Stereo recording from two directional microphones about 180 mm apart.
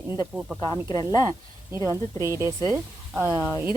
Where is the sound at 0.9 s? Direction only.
20° left (ahead or behind).